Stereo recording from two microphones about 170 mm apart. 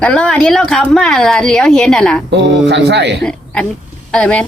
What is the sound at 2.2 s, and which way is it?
Speech, 90° right.